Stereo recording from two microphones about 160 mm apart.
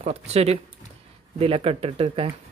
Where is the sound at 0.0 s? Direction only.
40° right (ahead or behind).